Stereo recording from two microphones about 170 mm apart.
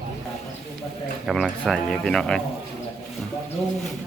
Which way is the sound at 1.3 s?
Centre (ahead or behind).